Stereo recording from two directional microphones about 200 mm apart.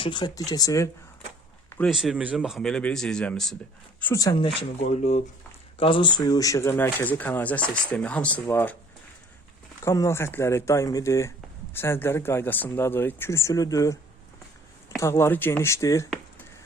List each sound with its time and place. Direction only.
0.0 s speech: 20° left (ahead or behind)
1.8 s a man's voice: centre (ahead or behind)
4.0 s speech: 15° left (ahead or behind)
4.8 s speech: 35° left (ahead or behind); by 8.7 s 10° left (ahead or behind)
9.8 s speech: 15° left (ahead or behind)
16.0 s a sound: 10° left (ahead or behind)